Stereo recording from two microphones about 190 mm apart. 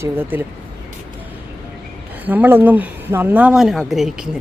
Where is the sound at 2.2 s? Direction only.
10° right (ahead or behind).